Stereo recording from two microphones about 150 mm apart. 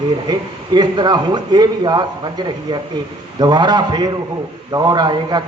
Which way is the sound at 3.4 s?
30° right (ahead or behind).